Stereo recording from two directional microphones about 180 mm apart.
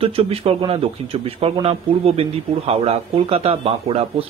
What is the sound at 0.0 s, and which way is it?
A man's voice, 30° right (ahead or behind).